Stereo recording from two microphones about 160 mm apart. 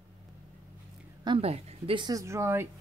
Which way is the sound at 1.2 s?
35° right (ahead or behind).